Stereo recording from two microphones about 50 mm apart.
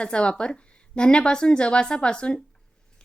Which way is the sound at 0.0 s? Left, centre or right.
Left.